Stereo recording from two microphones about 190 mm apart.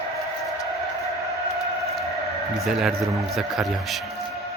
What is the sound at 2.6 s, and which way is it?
Speech, centre (ahead or behind).